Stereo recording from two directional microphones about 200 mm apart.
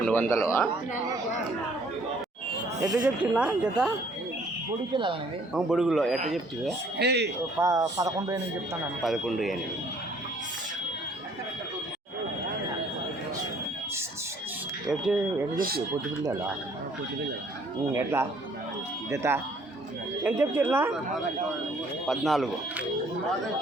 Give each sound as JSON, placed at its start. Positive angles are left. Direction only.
{"t": 0.0, "sound": "speech", "side_deg": 10}
{"t": 2.8, "sound": "speech", "side_deg": -15}
{"t": 3.3, "sound": "speech", "side_deg": -5}
{"t": 4.9, "sound": "speech", "side_deg": -25}
{"t": 5.5, "sound": "speech", "side_deg": -5}
{"t": 6.9, "sound": "speech", "side_deg": -55}
{"t": 7.6, "sound": "speech", "side_deg": -15}
{"t": 9.0, "sound": "speech", "side_deg": 0}
{"t": 14.8, "sound": "speech", "side_deg": 0}
{"t": 15.5, "sound": "speech", "side_deg": -45}
{"t": 17.9, "sound": "speech", "side_deg": -15}
{"t": 22.0, "sound": "speech", "side_deg": 0}